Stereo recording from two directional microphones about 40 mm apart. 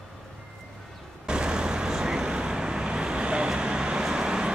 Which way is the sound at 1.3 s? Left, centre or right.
Right.